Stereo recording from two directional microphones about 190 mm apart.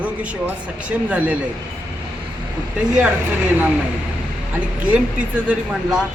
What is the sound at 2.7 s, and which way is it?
Speech, 5° right (ahead or behind).